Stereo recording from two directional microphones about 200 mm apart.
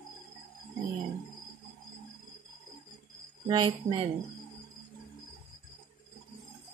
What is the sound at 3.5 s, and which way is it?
Speech, 25° right (ahead or behind).